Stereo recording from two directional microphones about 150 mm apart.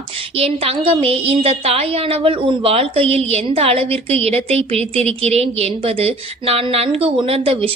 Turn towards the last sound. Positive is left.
turn(degrees=-40)  # may be behind; listen again after turning